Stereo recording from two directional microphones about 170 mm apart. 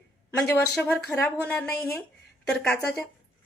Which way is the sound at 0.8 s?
10° left (ahead or behind).